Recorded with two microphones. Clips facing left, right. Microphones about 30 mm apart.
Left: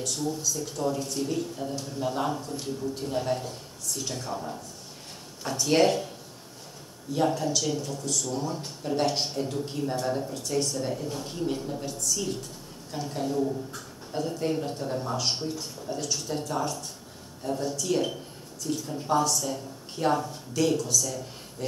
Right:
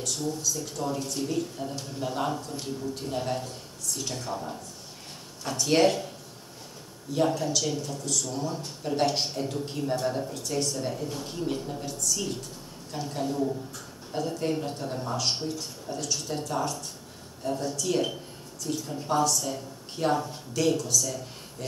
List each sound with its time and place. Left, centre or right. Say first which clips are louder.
0.0 s a man's voice: left 1 dB; centre
7.2 s a man's voice: even; centre